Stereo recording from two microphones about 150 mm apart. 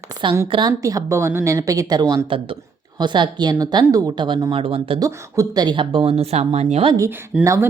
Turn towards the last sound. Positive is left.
turn(degrees=-15)  # may be behind; listen again after turning